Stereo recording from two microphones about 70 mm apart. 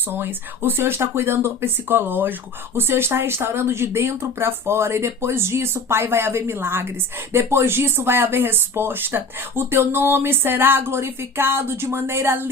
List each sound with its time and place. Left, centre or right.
0.1 s speech: right